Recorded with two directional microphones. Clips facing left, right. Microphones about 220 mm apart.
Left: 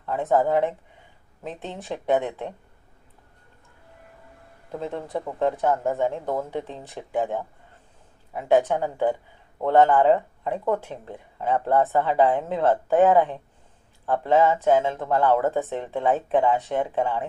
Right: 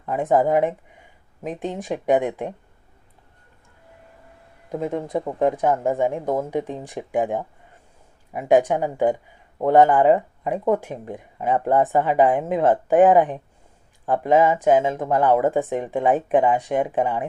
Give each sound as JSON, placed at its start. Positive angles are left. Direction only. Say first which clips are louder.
{"t": 0.0, "sound": "speech", "louder": "right 2 dB", "side_deg": -15}
{"t": 4.7, "sound": "speech", "louder": "right 5 dB", "side_deg": -15}